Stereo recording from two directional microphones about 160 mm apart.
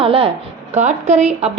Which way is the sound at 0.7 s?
45° right (ahead or behind).